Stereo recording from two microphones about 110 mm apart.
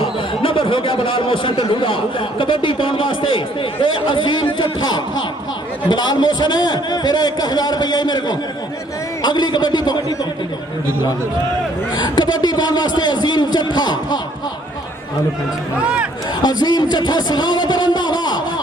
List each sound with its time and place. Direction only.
0.0 s a man's voice: 55° left (ahead or behind)
11.9 s a man's voice: 40° left (ahead or behind)
15.8 s speech: 10° right (ahead or behind)
16.4 s a man's voice: 40° left (ahead or behind)